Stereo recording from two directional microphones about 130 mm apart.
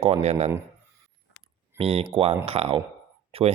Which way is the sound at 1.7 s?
50° right (ahead or behind).